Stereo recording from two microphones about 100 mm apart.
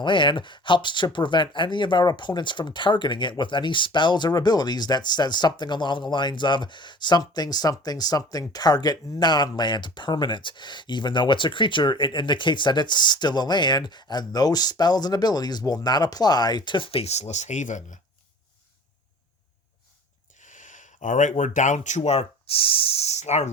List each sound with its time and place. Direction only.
0.0 s speech: 55° left (ahead or behind); by 17.2 s 90° left
22.0 s speech: 90° left